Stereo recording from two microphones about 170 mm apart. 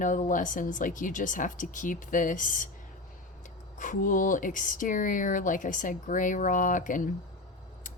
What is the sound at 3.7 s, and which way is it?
A woman's voice, 50° left (ahead or behind).